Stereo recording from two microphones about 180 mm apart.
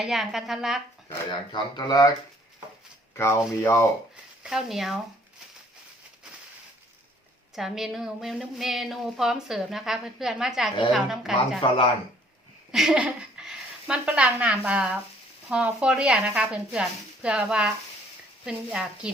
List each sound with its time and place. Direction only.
0.0 s a woman's voice: centre (ahead or behind)
1.3 s speech: 25° left (ahead or behind)
3.2 s speech: 15° left (ahead or behind)
4.4 s a woman's voice: centre (ahead or behind)
7.5 s a woman's voice: centre (ahead or behind)
12.7 s a woman's voice: 5° right (ahead or behind)